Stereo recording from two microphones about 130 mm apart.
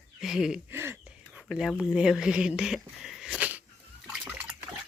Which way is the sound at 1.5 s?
Centre (ahead or behind).